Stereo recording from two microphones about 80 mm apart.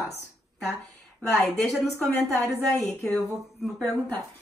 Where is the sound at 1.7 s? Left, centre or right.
Centre.